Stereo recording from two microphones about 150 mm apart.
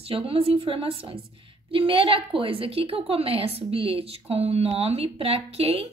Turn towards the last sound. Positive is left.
turn(degrees=-40)  # may be behind; listen again after turning